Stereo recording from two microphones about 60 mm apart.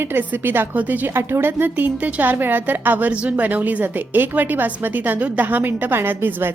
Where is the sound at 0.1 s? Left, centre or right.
Right.